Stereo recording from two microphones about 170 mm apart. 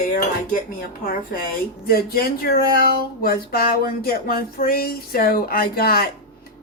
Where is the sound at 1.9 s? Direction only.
60° left (ahead or behind).